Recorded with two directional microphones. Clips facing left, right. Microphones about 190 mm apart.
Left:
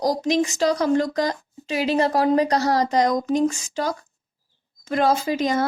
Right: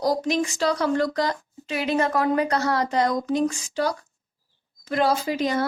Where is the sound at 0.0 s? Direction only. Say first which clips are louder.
Left 2 dB; 40° left (ahead or behind).